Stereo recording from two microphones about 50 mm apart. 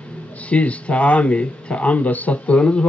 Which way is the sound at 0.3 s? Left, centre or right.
Left.